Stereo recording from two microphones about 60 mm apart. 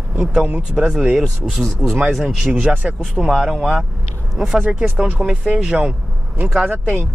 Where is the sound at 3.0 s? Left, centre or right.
Centre.